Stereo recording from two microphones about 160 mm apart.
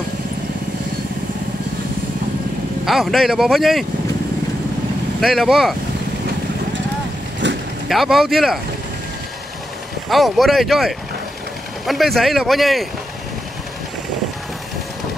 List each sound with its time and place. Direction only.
2.8 s speech: centre (ahead or behind)
5.2 s speech: centre (ahead or behind)
7.4 s vehicle: 90° right
7.9 s speech: centre (ahead or behind)
10.0 s speech: centre (ahead or behind)